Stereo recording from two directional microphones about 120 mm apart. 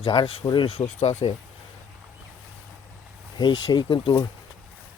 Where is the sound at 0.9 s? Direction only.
80° left.